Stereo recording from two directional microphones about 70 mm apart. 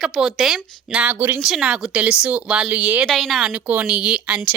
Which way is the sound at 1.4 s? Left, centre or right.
Centre.